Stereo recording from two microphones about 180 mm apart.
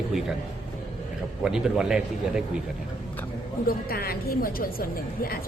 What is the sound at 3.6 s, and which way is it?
A woman's voice, 55° left (ahead or behind).